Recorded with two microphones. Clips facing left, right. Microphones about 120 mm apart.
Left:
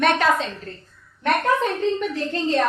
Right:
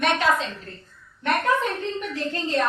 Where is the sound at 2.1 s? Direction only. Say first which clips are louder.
Left 3 dB; 35° left (ahead or behind).